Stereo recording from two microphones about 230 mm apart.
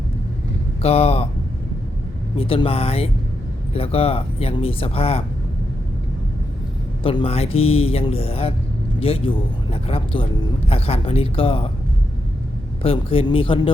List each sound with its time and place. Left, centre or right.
0.8 s speech: left
2.3 s speech: left
7.0 s speech: left
12.8 s speech: left